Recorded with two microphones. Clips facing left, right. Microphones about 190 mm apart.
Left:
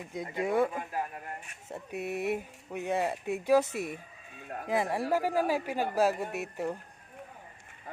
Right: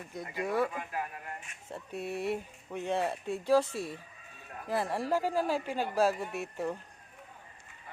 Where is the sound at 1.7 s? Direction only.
15° left (ahead or behind).